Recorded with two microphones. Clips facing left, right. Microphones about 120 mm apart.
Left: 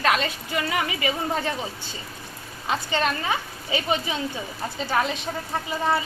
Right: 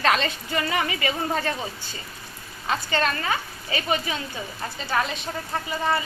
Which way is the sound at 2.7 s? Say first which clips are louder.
Even; 15° left (ahead or behind).